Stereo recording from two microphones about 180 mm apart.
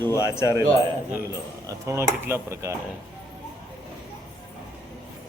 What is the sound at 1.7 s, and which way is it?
Dishes, 15° right (ahead or behind).